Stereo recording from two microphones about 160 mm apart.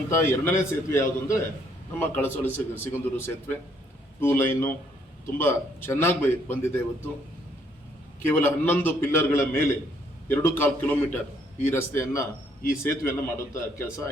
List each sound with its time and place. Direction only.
0.1 s a man's voice: 15° left (ahead or behind)
8.3 s a man's voice: 15° left (ahead or behind)